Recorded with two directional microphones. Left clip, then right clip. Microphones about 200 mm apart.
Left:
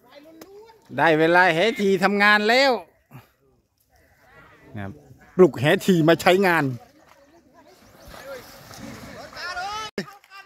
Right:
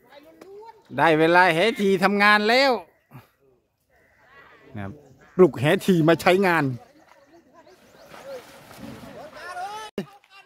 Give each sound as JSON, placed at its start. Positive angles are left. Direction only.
{"t": 0.9, "sound": "speech", "side_deg": -5}
{"t": 4.7, "sound": "speech", "side_deg": 0}
{"t": 9.4, "sound": "a sound", "side_deg": -50}